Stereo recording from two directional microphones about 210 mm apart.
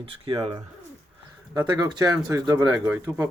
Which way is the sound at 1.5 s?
20° right (ahead or behind).